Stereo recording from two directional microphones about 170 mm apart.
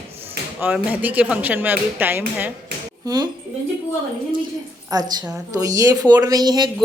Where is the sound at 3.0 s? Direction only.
25° right (ahead or behind).